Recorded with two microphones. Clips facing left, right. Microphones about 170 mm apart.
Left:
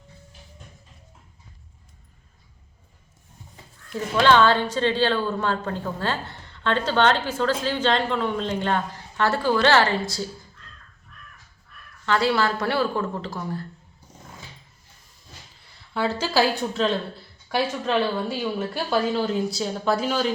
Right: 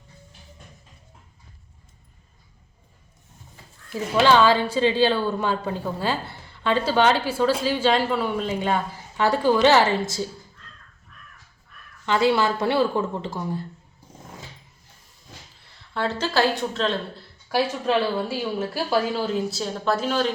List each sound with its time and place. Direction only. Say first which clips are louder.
3.8 s a woman's voice: even; 5° right (ahead or behind)
12.0 s a woman's voice: right 2 dB; 20° right (ahead or behind)
16.0 s a woman's voice: left 1 dB; 5° left (ahead or behind)